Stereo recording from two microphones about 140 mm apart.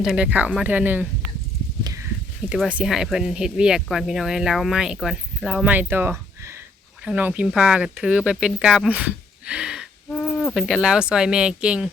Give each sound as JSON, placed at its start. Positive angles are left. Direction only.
{"t": 0.0, "sound": "speech", "side_deg": -5}
{"t": 1.8, "sound": "a sound", "side_deg": -25}
{"t": 2.5, "sound": "speech", "side_deg": -10}